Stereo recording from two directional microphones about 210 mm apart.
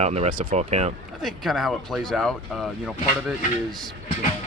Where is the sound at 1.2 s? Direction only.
Centre (ahead or behind).